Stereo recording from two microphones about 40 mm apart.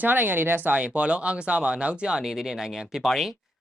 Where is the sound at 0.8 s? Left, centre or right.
Right.